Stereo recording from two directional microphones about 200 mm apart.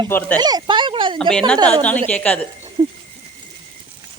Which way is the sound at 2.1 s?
5° left (ahead or behind).